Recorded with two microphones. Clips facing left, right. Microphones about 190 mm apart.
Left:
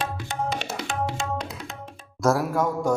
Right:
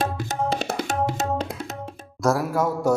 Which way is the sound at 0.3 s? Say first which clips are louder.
Right 3 dB; 35° right (ahead or behind).